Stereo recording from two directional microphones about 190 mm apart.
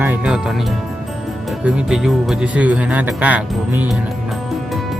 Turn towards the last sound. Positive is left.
turn(degrees=-10)  # may be behind; listen again after turning